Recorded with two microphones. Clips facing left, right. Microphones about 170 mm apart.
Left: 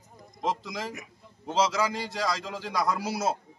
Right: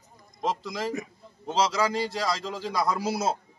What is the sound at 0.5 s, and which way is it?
Speech, 20° left (ahead or behind).